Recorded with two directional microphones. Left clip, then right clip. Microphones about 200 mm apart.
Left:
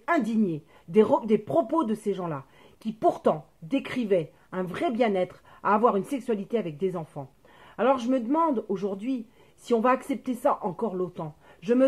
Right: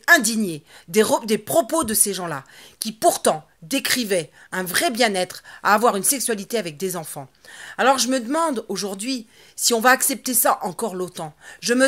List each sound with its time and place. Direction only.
0.3 s a woman's voice: 10° right (ahead or behind)